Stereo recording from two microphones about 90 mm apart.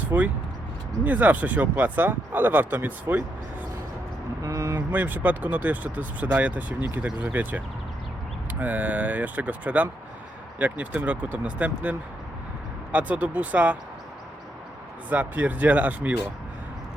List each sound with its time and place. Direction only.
0.1 s speech: 30° right (ahead or behind)
1.0 s speech: 20° right (ahead or behind)
4.4 s vehicle: 35° right (ahead or behind)
4.7 s speech: 20° right (ahead or behind)
15.1 s speech: 15° right (ahead or behind)